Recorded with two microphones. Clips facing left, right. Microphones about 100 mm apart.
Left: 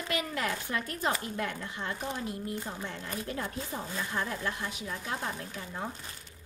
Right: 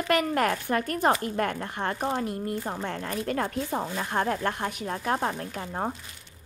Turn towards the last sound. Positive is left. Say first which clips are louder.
# right 7 dB
turn(degrees=-50)  # may be behind; listen again after turning